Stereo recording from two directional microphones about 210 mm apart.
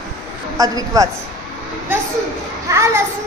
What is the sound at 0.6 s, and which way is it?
Speech, 15° right (ahead or behind).